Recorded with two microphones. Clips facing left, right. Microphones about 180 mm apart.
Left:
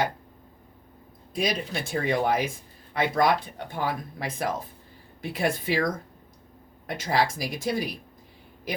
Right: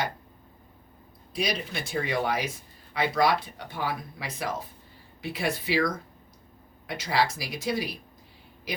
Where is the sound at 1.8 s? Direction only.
50° left (ahead or behind).